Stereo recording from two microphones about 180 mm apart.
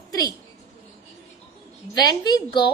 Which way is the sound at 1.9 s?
20° left (ahead or behind).